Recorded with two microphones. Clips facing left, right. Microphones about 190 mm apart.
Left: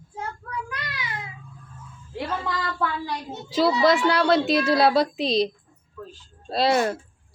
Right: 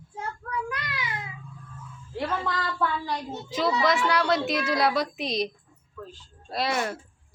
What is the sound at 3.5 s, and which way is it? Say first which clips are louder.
A child's voice: left 5 dB; 35° left (ahead or behind).